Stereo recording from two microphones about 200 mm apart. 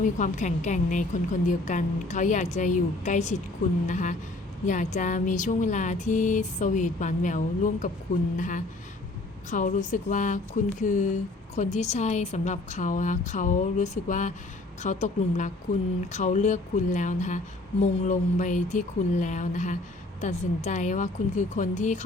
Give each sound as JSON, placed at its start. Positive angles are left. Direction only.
{"t": 0.0, "sound": "speech", "side_deg": 40}